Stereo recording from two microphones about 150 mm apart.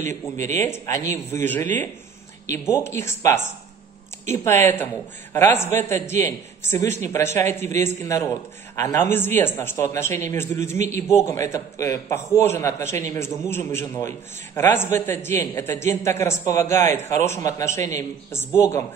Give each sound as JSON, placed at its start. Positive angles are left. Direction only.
{"t": 0.6, "sound": "a man's voice", "side_deg": 20}
{"t": 5.3, "sound": "a man's voice", "side_deg": 15}
{"t": 10.8, "sound": "a man's voice", "side_deg": -50}
{"t": 11.1, "sound": "a man's voice", "side_deg": 20}